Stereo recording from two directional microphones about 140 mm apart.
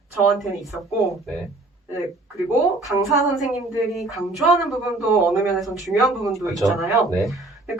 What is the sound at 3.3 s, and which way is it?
Speech, centre (ahead or behind).